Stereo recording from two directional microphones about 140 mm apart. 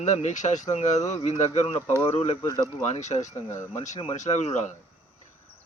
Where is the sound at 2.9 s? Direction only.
55° left (ahead or behind).